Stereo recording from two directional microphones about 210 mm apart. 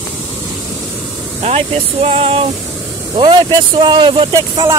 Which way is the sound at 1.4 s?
30° right (ahead or behind).